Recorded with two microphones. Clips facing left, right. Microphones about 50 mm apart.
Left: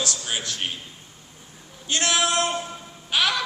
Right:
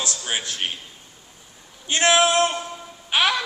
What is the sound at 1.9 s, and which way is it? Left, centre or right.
Speech, right.